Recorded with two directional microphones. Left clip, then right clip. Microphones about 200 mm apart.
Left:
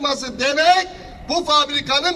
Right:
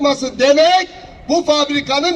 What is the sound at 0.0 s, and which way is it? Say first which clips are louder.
A man's voice: right 7 dB; 35° right (ahead or behind).